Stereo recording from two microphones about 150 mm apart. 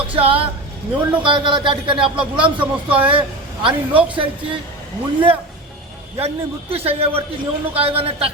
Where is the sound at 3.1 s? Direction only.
35° right (ahead or behind).